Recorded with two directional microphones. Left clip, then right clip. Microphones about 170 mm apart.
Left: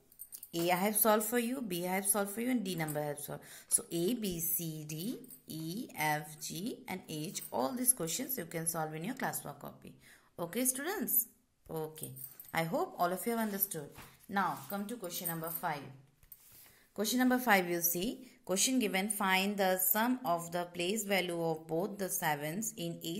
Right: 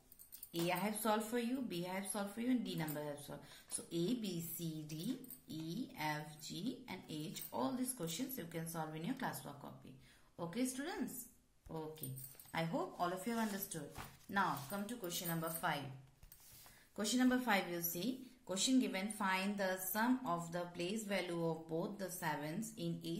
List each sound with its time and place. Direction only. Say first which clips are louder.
0.5 s a woman's voice: left 7 dB; 65° left (ahead or behind); by 15.8 s 30° left (ahead or behind)
16.9 s a woman's voice: left 5 dB; 45° left (ahead or behind); by 23.1 s 65° left (ahead or behind)